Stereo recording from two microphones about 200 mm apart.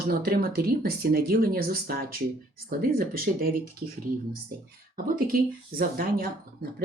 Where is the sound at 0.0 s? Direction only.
50° right (ahead or behind).